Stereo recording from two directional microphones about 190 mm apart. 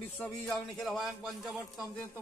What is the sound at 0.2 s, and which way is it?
A woman's voice, centre (ahead or behind).